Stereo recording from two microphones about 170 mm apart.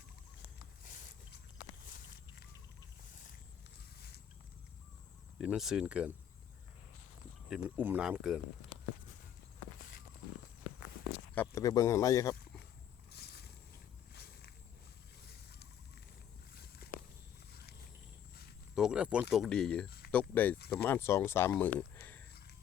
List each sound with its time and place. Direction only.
5.4 s speech: centre (ahead or behind)
7.5 s speech: 10° right (ahead or behind)
11.3 s speech: 20° left (ahead or behind)
13.1 s a sound: 70° left (ahead or behind)
14.1 s walk: 65° left (ahead or behind)
16.6 s boat: 65° left (ahead or behind)
17.5 s a sound: 70° left (ahead or behind)
18.7 s speech: 5° right (ahead or behind); by 22.2 s 10° left (ahead or behind)